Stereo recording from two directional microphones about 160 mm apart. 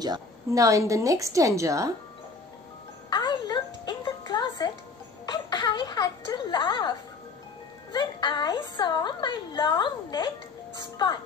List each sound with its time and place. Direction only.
0.0 s a woman's voice: 25° right (ahead or behind)
3.1 s music: 25° left (ahead or behind)
5.2 s a sound: 25° left (ahead or behind)
7.9 s a woman's voice: 30° left (ahead or behind)